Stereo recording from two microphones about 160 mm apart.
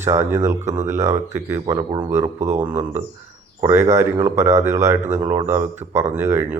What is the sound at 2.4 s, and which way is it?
Speech, 45° right (ahead or behind).